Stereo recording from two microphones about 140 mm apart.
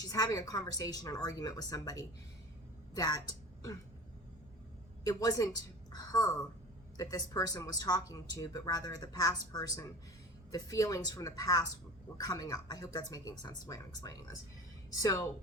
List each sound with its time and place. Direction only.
0.1 s a woman's voice: 25° left (ahead or behind)
5.0 s speech: 25° left (ahead or behind)